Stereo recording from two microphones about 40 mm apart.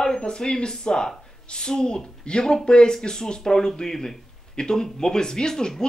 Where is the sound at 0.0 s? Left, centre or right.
Centre.